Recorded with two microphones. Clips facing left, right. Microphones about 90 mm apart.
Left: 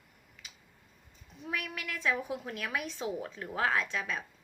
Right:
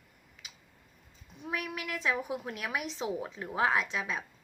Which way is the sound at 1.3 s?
20° right (ahead or behind).